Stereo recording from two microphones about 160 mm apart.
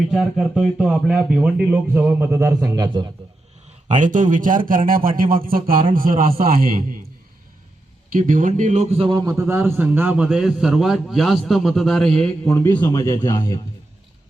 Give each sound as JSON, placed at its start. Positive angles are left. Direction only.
{"t": 0.1, "sound": "a man's voice", "side_deg": 0}
{"t": 3.8, "sound": "speech", "side_deg": -50}
{"t": 8.1, "sound": "a man's voice", "side_deg": -55}
{"t": 9.3, "sound": "a man's voice", "side_deg": -15}
{"t": 12.5, "sound": "speech", "side_deg": 15}